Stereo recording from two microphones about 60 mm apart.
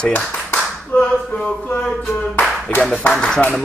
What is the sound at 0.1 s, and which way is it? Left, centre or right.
Clapping, left.